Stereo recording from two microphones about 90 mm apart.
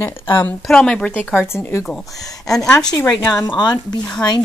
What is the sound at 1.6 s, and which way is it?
Speech, 25° left (ahead or behind).